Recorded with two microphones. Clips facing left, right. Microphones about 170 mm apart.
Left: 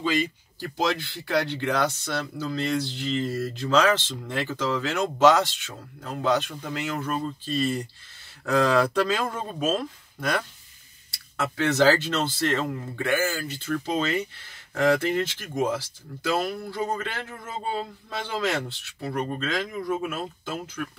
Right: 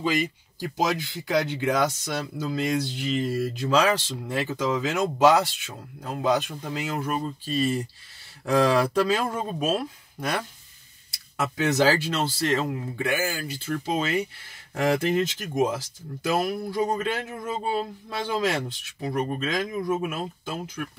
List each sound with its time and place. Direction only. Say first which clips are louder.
0.0 s speech: even; 10° right (ahead or behind)